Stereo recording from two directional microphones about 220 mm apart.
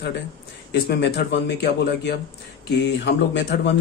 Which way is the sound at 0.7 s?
50° left (ahead or behind).